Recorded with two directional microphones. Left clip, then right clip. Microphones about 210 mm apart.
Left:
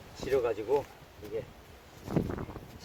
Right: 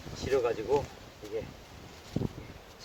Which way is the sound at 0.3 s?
Centre (ahead or behind).